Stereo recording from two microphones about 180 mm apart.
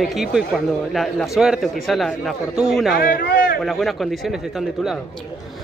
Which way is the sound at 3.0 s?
60° left (ahead or behind).